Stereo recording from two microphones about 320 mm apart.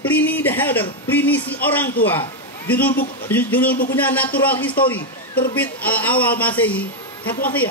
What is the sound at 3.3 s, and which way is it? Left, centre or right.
A man's voice, centre.